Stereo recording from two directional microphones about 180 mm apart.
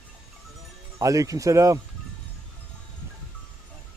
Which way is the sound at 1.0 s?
20° right (ahead or behind).